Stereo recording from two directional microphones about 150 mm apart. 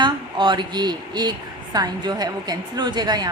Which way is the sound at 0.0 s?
30° right (ahead or behind).